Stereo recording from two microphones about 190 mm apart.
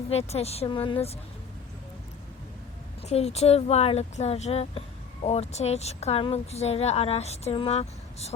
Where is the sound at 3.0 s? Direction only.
35° left (ahead or behind).